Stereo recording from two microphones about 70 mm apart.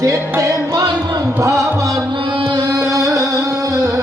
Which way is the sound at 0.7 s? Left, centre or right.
Right.